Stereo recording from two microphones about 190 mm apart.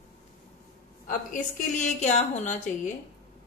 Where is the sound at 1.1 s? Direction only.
40° left (ahead or behind).